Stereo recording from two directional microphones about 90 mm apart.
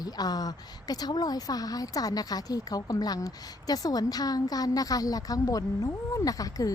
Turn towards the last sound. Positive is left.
turn(degrees=40)  # may be behind; listen again after turning